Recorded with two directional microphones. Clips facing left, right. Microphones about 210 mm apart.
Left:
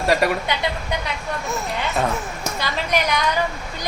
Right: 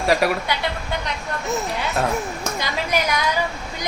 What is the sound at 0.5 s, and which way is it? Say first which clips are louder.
Speech: even; 20° left (ahead or behind).